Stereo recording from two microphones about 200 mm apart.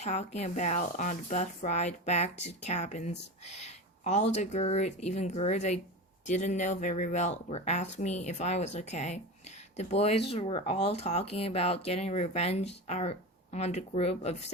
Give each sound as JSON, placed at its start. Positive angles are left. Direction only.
{"t": 0.0, "sound": "speech", "side_deg": 35}